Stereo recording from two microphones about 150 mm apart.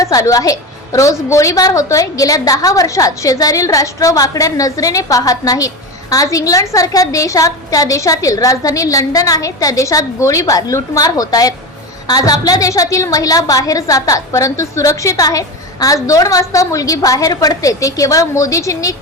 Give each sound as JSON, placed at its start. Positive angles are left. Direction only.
{"t": 0.0, "sound": "a woman's voice", "side_deg": 20}